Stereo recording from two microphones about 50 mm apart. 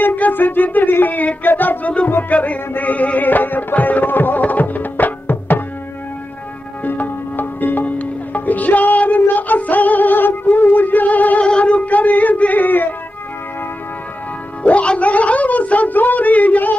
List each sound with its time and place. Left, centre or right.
0.0 s music: left
2.0 s music: left
2.3 s music: left
6.8 s music: left
11.4 s music: left
14.6 s speech: left